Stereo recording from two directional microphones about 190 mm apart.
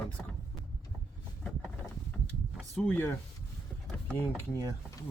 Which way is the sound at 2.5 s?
5° left (ahead or behind).